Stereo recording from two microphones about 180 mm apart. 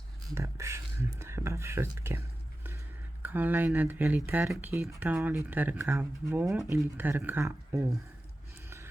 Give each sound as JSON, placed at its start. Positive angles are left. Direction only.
{"t": 0.3, "sound": "speech", "side_deg": -15}
{"t": 3.2, "sound": "speech", "side_deg": -10}